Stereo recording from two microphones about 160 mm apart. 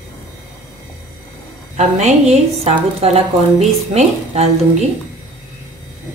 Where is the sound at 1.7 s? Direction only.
45° right (ahead or behind).